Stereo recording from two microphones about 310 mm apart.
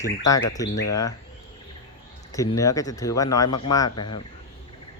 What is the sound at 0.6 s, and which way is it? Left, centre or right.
Speech, left.